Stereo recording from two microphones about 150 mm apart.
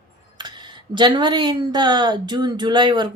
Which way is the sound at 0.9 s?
30° right (ahead or behind).